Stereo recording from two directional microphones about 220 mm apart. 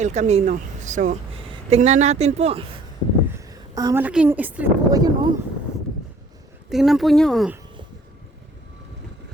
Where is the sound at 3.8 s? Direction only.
15° right (ahead or behind).